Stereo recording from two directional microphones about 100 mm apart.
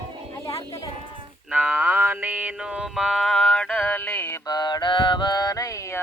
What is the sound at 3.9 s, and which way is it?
Music, 20° left (ahead or behind).